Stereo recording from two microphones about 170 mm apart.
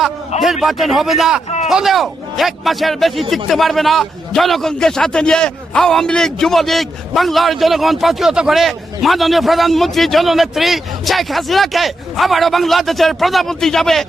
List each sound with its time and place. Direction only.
0.4 s a man's voice: centre (ahead or behind)
1.5 s a sound: 40° left (ahead or behind)
1.7 s a man's voice: centre (ahead or behind)